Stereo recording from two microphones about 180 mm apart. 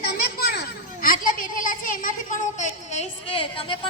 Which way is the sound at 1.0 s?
50° left (ahead or behind).